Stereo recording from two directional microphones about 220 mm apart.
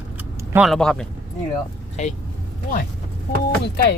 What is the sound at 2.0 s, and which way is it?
Speech, 30° left (ahead or behind).